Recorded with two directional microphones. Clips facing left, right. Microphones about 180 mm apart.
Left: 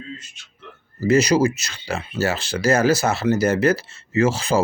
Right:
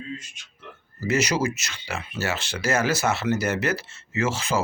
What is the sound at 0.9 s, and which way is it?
Speech, 35° left (ahead or behind).